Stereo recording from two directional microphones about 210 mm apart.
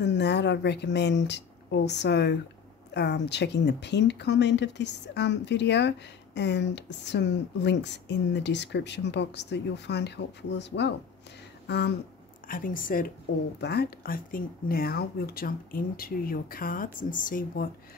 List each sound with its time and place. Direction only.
0.0 s speech: 55° left (ahead or behind)
12.4 s a woman's voice: 40° left (ahead or behind)
13.6 s speech: 50° left (ahead or behind)